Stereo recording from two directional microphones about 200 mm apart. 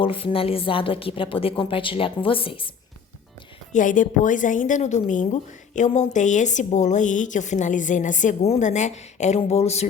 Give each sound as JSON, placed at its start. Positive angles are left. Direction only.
{"t": 0.0, "sound": "a woman's voice", "side_deg": 25}
{"t": 3.7, "sound": "a woman's voice", "side_deg": 40}